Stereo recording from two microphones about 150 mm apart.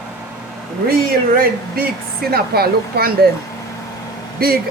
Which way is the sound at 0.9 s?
85° right.